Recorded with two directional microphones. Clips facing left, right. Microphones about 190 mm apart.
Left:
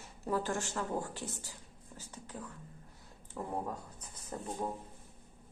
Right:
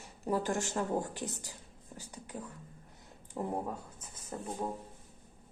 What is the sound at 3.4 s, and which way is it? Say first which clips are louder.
Speech: right 2 dB; 25° right (ahead or behind).